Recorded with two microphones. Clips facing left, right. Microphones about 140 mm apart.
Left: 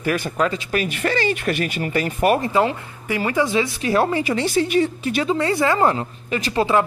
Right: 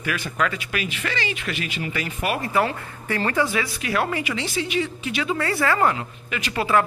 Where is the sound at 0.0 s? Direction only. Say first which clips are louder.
Left 6 dB; 45° left (ahead or behind).